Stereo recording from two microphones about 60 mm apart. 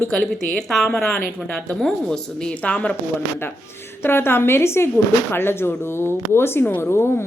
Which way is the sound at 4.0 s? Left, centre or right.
Left.